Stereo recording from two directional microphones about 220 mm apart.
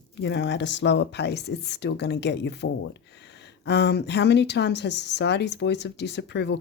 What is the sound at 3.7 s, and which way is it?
Speech, 50° left (ahead or behind).